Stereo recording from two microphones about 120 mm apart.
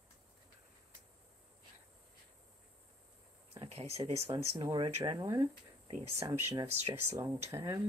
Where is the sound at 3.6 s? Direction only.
60° right (ahead or behind).